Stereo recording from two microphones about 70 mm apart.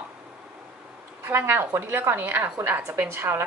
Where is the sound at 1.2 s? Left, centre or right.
Right.